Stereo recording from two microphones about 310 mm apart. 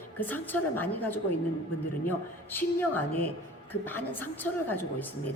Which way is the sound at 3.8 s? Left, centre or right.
Centre.